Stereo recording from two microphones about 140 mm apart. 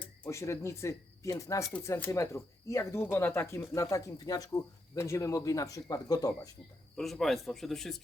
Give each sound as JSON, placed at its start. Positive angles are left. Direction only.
{"t": 0.3, "sound": "speech", "side_deg": 20}
{"t": 6.9, "sound": "speech", "side_deg": 0}